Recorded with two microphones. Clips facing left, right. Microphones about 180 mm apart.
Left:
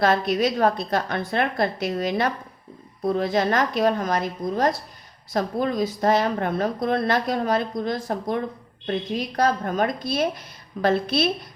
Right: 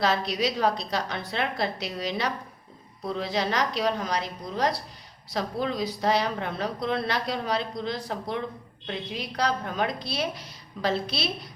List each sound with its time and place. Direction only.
0.0 s a woman's voice: 50° left (ahead or behind)